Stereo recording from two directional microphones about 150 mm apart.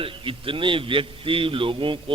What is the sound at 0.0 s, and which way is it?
A man's voice, 35° right (ahead or behind).